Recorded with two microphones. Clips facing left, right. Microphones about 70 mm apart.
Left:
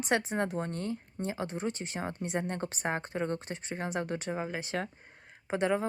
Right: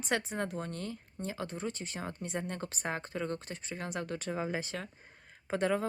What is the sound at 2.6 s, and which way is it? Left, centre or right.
Speech, left.